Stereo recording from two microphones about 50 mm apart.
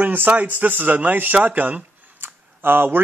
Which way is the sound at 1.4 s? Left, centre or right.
Right.